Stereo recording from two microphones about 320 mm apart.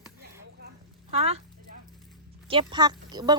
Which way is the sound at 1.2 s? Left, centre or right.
Centre.